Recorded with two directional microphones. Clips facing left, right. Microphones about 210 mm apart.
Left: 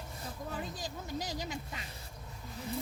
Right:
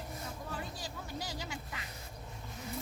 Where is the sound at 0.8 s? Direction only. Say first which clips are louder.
Left 3 dB; 20° left (ahead or behind).